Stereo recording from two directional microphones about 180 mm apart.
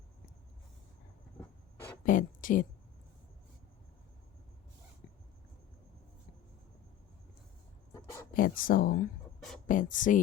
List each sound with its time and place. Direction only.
2.0 s a woman's voice: 50° left (ahead or behind)
8.3 s speech: 50° left (ahead or behind)